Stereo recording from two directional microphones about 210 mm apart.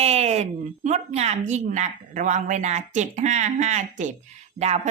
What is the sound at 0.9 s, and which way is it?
A woman's voice, 30° right (ahead or behind).